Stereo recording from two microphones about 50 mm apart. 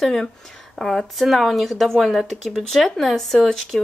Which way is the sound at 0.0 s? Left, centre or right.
Centre.